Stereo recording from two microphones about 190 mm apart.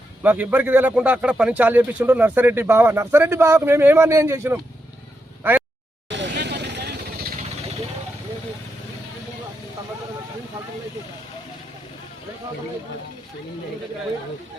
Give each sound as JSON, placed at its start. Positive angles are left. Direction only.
{"t": 0.2, "sound": "a man's voice", "side_deg": -10}
{"t": 5.4, "sound": "a sound", "side_deg": -10}
{"t": 6.1, "sound": "vehicle", "side_deg": -70}